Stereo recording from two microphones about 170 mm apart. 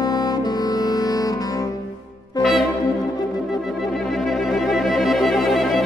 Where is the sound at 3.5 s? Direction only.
Centre (ahead or behind).